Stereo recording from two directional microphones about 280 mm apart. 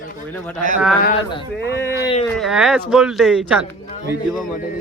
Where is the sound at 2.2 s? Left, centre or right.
Centre.